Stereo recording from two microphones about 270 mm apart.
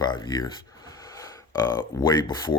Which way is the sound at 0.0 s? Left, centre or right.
Centre.